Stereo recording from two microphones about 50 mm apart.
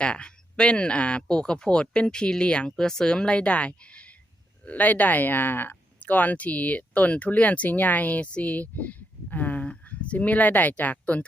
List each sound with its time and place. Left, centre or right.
0.0 s speech: left